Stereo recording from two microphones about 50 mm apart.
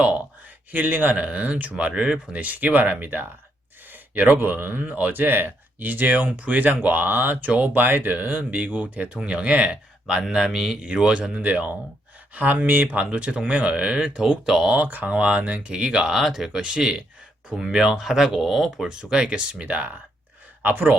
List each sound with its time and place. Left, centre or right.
0.7 s speech: right
3.9 s a sound: right
4.4 s speech: right
9.0 s speech: right
12.9 s speech: right
14.7 s speech: right
15.1 s speech: right; by 16.6 s centre
16.6 s speech: centre; by 20.9 s right